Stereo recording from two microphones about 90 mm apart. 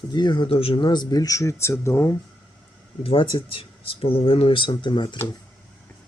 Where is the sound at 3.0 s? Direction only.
85° left; by 5.1 s 60° left (ahead or behind).